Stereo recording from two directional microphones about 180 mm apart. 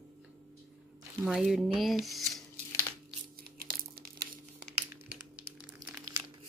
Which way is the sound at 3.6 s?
55° right (ahead or behind).